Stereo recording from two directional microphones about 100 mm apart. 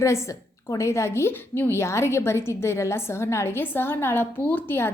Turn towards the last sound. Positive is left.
turn(degrees=20)  # may be behind; listen again after turning